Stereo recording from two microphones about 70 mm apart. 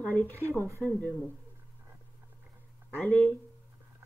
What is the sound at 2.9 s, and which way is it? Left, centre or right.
Speech, left.